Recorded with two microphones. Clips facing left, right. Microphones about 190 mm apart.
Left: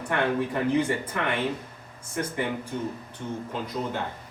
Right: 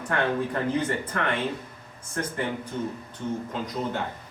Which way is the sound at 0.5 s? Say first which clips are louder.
Left 2 dB; 10° left (ahead or behind).